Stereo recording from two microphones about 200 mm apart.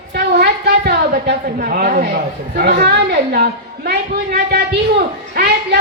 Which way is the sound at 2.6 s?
50° right (ahead or behind).